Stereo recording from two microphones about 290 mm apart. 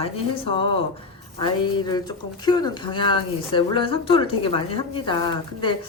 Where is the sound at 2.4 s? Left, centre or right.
Centre.